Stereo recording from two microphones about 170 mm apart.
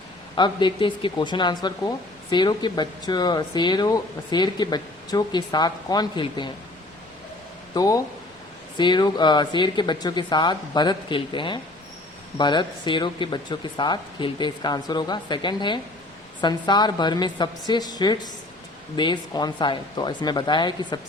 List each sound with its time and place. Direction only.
0.3 s speech: 25° left (ahead or behind)
7.7 s speech: 20° left (ahead or behind)